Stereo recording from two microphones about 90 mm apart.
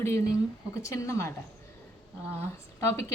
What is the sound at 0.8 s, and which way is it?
Speech, 35° left (ahead or behind).